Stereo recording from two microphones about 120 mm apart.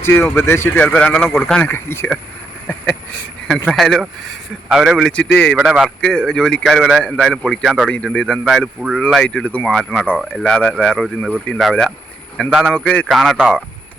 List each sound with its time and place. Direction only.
0.0 s speech: 20° left (ahead or behind)
1.7 s speech: 20° left (ahead or behind)
3.7 s speech: 5° left (ahead or behind)
5.5 s speech: 5° right (ahead or behind)
6.0 s speech: 5° left (ahead or behind)